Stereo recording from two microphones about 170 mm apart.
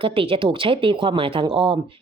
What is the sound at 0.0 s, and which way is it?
Speech, 30° right (ahead or behind).